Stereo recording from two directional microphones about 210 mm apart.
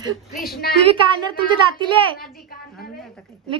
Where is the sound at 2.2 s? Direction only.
45° left (ahead or behind).